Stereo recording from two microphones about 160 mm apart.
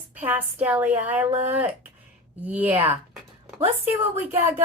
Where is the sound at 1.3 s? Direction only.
40° right (ahead or behind).